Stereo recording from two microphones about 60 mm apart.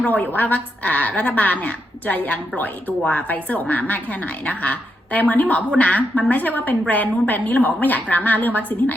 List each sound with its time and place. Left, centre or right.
0.1 s a woman's voice: left